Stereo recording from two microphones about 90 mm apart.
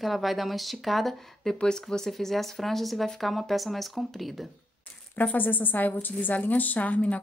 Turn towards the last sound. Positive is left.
turn(degrees=15)  # may be behind; listen again after turning